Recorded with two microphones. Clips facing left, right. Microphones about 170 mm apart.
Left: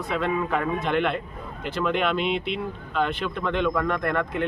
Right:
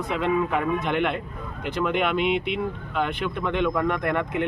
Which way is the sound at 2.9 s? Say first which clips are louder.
Left 1 dB; 10° right (ahead or behind).